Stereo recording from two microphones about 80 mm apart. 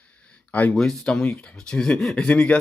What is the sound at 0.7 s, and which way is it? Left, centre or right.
Speech, centre.